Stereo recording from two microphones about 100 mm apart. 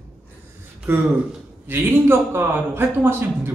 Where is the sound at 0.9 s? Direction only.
25° right (ahead or behind).